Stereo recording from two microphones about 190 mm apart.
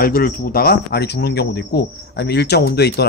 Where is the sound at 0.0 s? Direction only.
50° left (ahead or behind).